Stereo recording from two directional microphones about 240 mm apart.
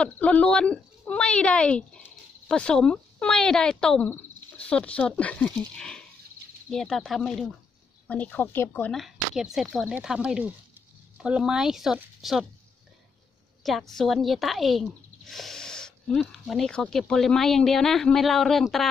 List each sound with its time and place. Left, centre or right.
0.0 s speech: centre
13.6 s speech: centre